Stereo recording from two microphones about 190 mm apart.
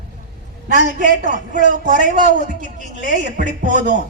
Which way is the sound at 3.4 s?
40° right (ahead or behind).